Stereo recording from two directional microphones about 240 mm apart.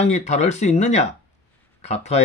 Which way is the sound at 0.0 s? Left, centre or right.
Left.